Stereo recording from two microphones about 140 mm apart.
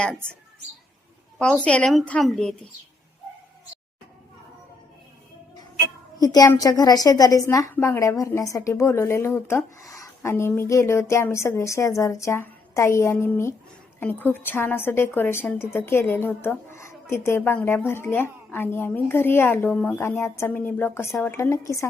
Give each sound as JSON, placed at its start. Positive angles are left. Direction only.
{"t": 1.6, "sound": "a woman's voice", "side_deg": 5}
{"t": 6.1, "sound": "a woman's voice", "side_deg": 25}